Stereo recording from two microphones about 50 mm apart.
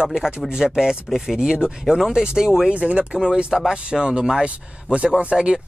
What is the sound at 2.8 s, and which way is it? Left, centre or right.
Speech, right.